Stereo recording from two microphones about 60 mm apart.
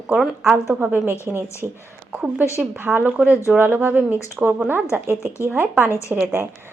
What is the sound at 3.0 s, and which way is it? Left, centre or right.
Speech, right.